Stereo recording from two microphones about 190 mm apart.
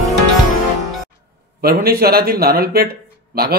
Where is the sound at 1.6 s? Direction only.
55° right (ahead or behind).